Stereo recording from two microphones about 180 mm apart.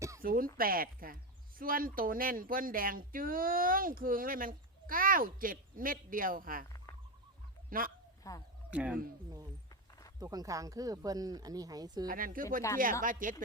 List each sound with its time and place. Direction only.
0.2 s speech: 50° right (ahead or behind)
7.7 s speech: 50° right (ahead or behind)
8.2 s speech: 20° left (ahead or behind)
8.7 s speech: 5° right (ahead or behind)
10.2 s speech: 20° right (ahead or behind)
12.0 s speech: 50° right (ahead or behind)